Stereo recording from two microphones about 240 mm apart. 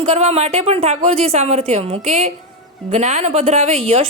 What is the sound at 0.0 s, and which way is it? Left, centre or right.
A woman's voice, right.